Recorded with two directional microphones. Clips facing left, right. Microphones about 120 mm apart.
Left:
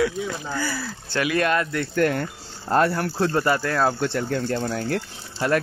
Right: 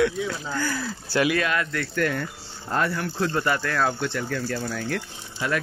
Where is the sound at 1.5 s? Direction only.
30° left (ahead or behind).